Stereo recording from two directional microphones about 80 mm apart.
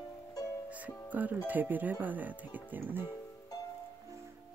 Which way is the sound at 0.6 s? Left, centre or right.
Centre.